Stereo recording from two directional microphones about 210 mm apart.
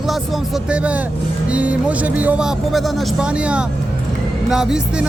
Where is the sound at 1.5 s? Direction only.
5° right (ahead or behind).